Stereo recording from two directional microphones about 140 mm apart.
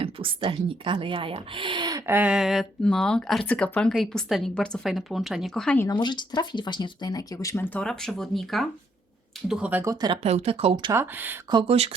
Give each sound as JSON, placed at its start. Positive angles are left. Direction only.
{"t": 0.0, "sound": "speech", "side_deg": -40}
{"t": 2.0, "sound": "speech", "side_deg": -10}
{"t": 5.9, "sound": "speech", "side_deg": 30}
{"t": 9.5, "sound": "speech", "side_deg": -10}
{"t": 9.9, "sound": "speech", "side_deg": -30}
{"t": 10.2, "sound": "speech", "side_deg": -50}
{"t": 10.9, "sound": "speech", "side_deg": -15}
{"t": 11.5, "sound": "speech", "side_deg": -45}